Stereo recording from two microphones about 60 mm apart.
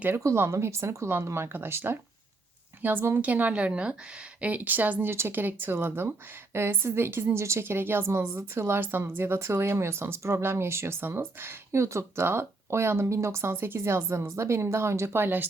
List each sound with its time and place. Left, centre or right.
0.2 s a woman's voice: right
3.2 s a woman's voice: right